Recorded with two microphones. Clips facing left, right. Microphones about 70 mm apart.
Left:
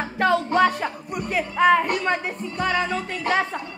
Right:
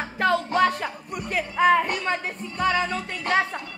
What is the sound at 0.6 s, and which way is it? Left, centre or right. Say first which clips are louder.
Speech: left 2 dB; centre.